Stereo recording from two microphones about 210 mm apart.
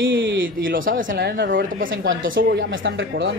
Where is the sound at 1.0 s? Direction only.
45° right (ahead or behind).